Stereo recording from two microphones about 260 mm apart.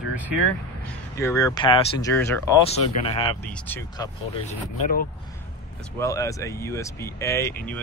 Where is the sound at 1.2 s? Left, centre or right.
Centre.